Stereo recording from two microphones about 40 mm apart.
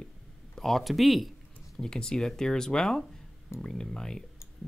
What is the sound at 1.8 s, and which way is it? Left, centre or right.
Speech, centre.